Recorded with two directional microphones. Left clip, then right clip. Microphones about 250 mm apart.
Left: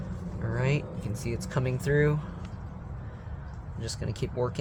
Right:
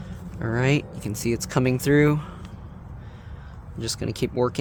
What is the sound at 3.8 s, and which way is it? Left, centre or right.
Speech, right.